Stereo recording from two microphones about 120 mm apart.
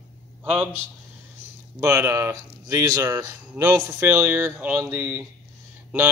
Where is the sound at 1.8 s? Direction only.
20° right (ahead or behind).